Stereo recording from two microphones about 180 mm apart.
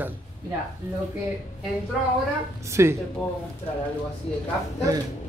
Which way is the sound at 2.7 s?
15° right (ahead or behind).